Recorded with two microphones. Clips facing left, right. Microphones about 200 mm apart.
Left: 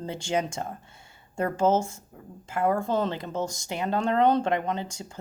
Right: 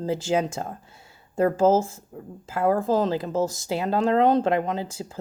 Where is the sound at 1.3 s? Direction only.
90° right.